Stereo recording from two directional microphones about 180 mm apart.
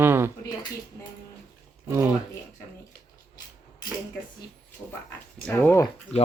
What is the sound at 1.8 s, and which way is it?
Speech, 15° right (ahead or behind).